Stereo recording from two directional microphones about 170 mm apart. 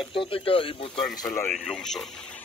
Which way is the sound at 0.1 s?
30° left (ahead or behind).